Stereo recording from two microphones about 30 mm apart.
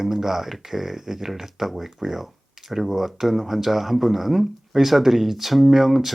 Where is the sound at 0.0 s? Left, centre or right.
Centre.